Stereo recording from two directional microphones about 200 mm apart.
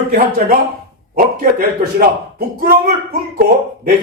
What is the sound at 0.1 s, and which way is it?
Speech, 45° right (ahead or behind).